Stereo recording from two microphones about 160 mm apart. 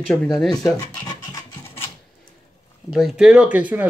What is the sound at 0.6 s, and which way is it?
Scratch, 25° left (ahead or behind).